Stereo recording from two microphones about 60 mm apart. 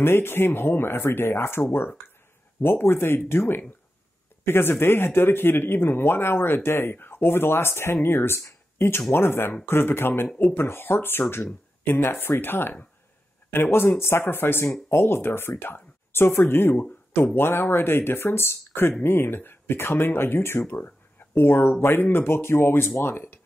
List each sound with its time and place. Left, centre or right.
0.0 s speech: left
2.6 s speech: left
10.5 s speech: left